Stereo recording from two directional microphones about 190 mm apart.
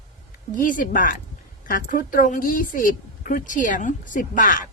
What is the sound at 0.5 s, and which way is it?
Speech, 45° left (ahead or behind).